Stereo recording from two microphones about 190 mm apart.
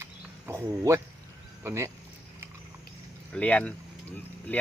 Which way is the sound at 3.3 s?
5° left (ahead or behind).